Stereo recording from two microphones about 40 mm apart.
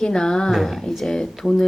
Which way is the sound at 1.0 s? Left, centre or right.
Centre.